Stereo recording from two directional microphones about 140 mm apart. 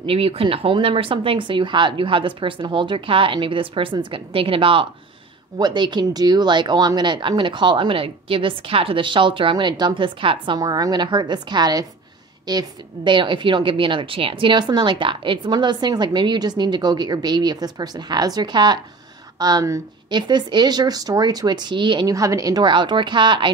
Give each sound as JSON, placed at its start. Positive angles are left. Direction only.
{"t": 0.0, "sound": "a woman's voice", "side_deg": -40}
{"t": 10.6, "sound": "a woman's voice", "side_deg": -30}